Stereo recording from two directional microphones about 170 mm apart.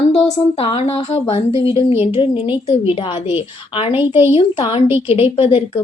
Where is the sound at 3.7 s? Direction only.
30° left (ahead or behind).